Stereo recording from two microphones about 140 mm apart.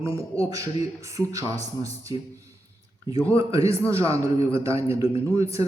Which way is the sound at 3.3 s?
20° right (ahead or behind).